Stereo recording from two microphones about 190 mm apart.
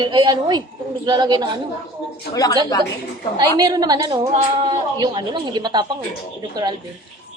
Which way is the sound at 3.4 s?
20° right (ahead or behind).